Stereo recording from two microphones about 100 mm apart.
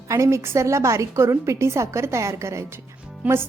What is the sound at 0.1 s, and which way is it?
A woman's voice, 30° right (ahead or behind).